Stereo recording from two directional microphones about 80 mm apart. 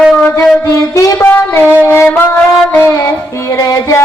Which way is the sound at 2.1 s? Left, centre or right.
Left.